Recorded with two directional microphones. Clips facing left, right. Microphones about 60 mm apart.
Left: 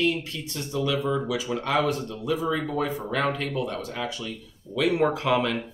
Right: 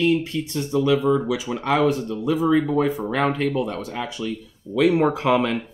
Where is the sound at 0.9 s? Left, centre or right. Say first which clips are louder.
Right 6 dB; right.